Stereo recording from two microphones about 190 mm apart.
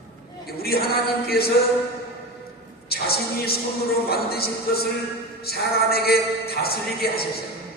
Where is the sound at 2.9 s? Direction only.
55° left (ahead or behind).